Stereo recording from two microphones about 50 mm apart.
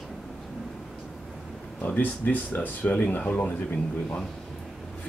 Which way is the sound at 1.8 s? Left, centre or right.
Left.